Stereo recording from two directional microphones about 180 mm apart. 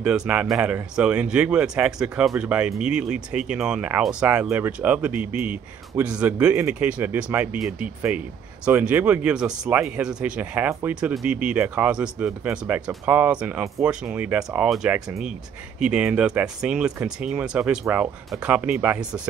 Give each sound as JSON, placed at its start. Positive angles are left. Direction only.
{"t": 0.0, "sound": "speech", "side_deg": -5}